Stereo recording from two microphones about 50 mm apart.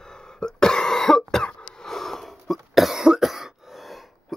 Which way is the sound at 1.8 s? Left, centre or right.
Centre.